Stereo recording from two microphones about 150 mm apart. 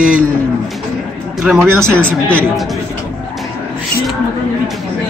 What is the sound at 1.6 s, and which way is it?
Speech, 15° right (ahead or behind).